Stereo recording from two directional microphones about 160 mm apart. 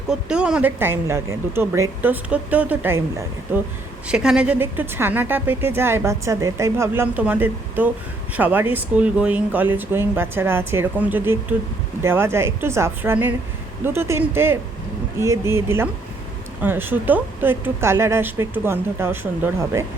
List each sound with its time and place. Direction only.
0.1 s a woman's voice: 5° right (ahead or behind)